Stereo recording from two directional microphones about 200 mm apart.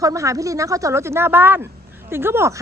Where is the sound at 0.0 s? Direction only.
15° right (ahead or behind).